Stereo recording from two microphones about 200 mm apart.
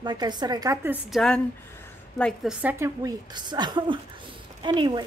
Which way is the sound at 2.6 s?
10° right (ahead or behind).